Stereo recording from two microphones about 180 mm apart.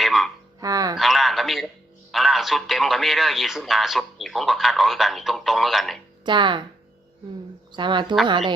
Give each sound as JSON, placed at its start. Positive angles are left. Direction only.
{"t": 0.0, "sound": "a sound", "side_deg": 0}
{"t": 0.6, "sound": "speech", "side_deg": -20}
{"t": 0.9, "sound": "a sound", "side_deg": 0}
{"t": 2.1, "sound": "a man's voice", "side_deg": 0}
{"t": 6.2, "sound": "speech", "side_deg": -25}
{"t": 7.7, "sound": "speech", "side_deg": -25}